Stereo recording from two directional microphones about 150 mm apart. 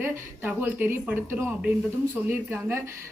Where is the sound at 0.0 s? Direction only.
15° right (ahead or behind).